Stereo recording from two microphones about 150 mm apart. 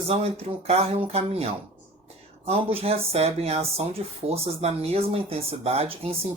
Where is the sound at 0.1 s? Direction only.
45° right (ahead or behind).